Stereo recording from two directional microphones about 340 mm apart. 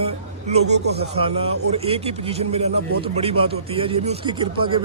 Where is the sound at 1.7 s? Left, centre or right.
Centre.